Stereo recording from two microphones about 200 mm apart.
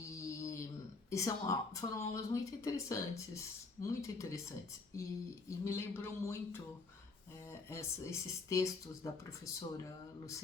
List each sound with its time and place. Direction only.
0.0 s a sound: 15° left (ahead or behind)
1.1 s speech: 15° left (ahead or behind)
5.5 s speech: 15° left (ahead or behind)
7.7 s speech: 15° left (ahead or behind)